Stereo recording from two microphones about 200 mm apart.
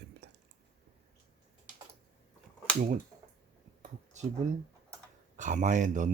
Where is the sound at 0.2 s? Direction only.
60° right (ahead or behind).